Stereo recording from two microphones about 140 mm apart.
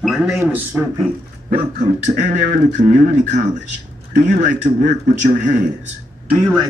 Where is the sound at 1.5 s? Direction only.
60° right (ahead or behind).